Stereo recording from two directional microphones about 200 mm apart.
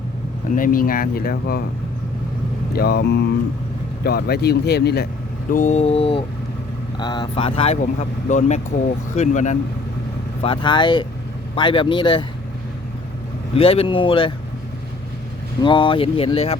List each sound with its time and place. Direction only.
0.5 s speech: 45° left (ahead or behind)
2.7 s speech: 50° left (ahead or behind)
5.5 s mantra: 40° left (ahead or behind)
6.9 s speech: 20° left (ahead or behind)
9.1 s mantra: 35° left (ahead or behind)
10.4 s speech: 25° left (ahead or behind)
13.5 s speech: 30° left (ahead or behind)
15.6 s speech: 25° left (ahead or behind)